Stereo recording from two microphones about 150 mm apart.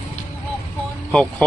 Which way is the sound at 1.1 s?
5° left (ahead or behind).